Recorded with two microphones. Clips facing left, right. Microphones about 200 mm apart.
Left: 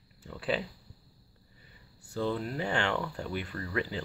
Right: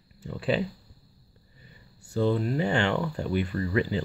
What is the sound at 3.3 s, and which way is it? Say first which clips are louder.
Speech: right 8 dB; 5° right (ahead or behind).